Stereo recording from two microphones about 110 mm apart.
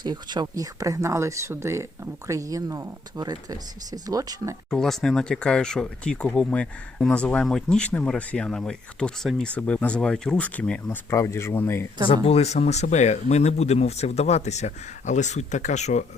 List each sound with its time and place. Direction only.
0.0 s speech: 40° right (ahead or behind)
4.7 s speech: 5° left (ahead or behind)
11.1 s speech: 25° left (ahead or behind)
12.0 s speech: 55° left (ahead or behind); by 16.0 s 90° left